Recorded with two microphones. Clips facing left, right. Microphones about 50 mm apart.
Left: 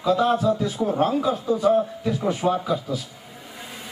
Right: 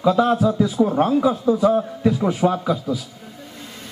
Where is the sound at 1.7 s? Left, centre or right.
Right.